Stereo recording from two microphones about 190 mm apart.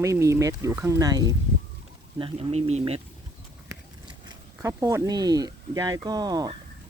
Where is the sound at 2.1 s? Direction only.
30° right (ahead or behind).